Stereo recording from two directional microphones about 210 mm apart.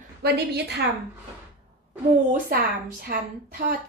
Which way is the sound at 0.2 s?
50° right (ahead or behind).